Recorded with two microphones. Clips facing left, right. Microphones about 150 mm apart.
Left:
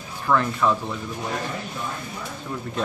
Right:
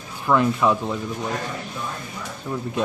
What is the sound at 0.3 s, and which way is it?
Speech, 15° right (ahead or behind).